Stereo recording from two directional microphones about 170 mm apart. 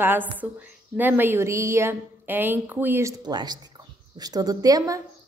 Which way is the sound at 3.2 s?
25° right (ahead or behind).